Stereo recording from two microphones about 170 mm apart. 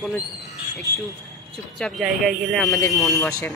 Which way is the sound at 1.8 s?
Centre (ahead or behind).